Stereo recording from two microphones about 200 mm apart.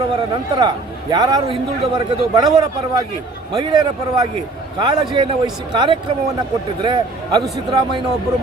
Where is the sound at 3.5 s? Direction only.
20° right (ahead or behind).